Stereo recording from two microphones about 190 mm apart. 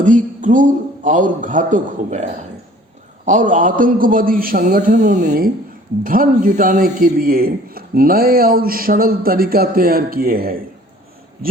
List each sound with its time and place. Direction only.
0.0 s a man's voice: 45° right (ahead or behind)